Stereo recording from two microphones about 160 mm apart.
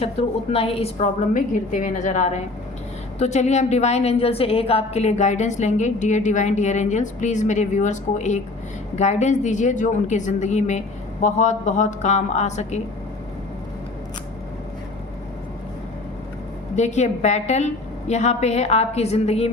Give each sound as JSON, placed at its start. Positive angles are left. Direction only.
{"t": 0.0, "sound": "a woman's voice", "side_deg": 40}
{"t": 16.7, "sound": "a woman's voice", "side_deg": 45}